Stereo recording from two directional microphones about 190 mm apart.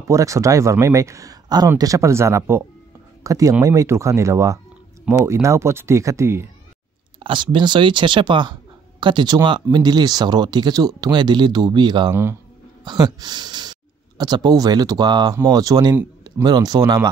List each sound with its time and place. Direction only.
0.1 s speech: 15° right (ahead or behind)
7.2 s speech: 25° right (ahead or behind)